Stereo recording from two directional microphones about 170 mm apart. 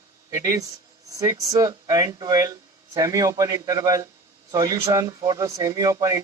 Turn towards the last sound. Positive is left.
turn(degrees=-20)  # may be behind; listen again after turning